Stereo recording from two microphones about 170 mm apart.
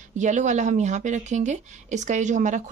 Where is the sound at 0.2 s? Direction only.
45° right (ahead or behind).